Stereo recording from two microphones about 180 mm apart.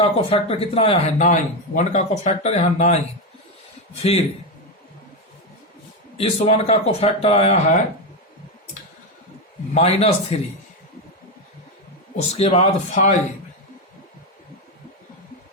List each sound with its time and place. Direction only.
0.0 s speech: 30° left (ahead or behind)
4.0 s speech: 35° left (ahead or behind)
6.1 s speech: 35° left (ahead or behind)
9.7 s speech: 35° left (ahead or behind)
12.1 s speech: 35° left (ahead or behind)